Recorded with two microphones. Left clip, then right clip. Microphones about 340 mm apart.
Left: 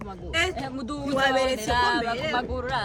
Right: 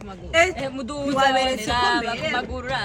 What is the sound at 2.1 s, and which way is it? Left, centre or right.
Speech, centre.